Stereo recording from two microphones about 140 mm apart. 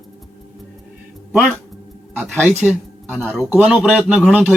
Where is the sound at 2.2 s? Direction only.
10° right (ahead or behind).